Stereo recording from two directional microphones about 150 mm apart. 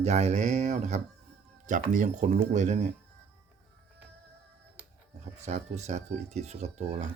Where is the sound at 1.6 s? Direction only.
60° right (ahead or behind).